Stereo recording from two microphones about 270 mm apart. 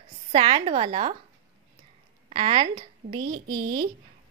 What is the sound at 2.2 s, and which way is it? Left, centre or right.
Speech, centre.